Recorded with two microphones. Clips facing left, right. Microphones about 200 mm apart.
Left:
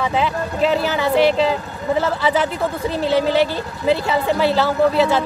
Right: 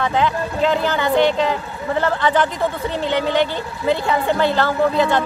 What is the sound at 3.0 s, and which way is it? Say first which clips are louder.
Speech: left 3 dB; 35° left (ahead or behind).